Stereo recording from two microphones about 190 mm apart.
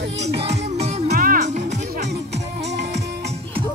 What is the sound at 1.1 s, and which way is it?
Music, 50° right (ahead or behind).